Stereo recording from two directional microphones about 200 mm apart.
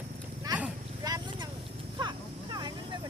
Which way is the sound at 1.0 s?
20° right (ahead or behind).